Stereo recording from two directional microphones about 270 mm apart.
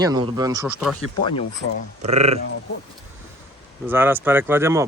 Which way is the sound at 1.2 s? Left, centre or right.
Centre.